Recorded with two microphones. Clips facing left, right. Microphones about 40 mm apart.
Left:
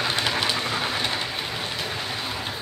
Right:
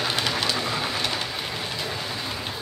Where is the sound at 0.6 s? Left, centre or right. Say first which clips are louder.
Left 1 dB; left.